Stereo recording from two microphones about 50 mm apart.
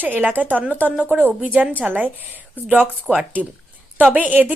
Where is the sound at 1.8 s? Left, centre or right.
Centre.